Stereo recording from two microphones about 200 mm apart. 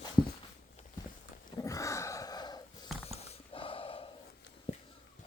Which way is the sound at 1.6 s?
15° left (ahead or behind).